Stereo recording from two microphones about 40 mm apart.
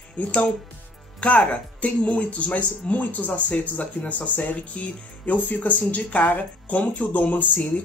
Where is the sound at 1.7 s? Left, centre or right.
Left.